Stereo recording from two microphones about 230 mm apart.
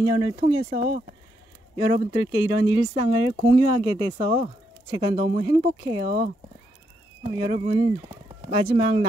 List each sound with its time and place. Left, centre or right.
0.0 s speech: centre
1.8 s speech: centre